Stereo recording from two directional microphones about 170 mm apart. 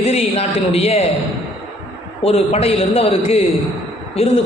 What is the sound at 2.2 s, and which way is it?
A man's voice, 35° left (ahead or behind).